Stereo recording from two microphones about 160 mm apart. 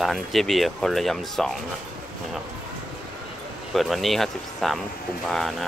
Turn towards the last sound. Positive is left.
turn(degrees=5)  # may be behind; listen again after turning